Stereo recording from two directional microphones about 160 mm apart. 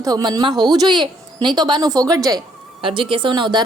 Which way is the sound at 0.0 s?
25° right (ahead or behind).